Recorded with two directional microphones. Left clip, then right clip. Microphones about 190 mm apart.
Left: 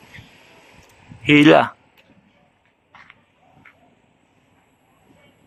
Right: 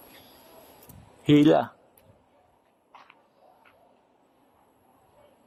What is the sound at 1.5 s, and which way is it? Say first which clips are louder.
Speech: left 9 dB; 20° left (ahead or behind).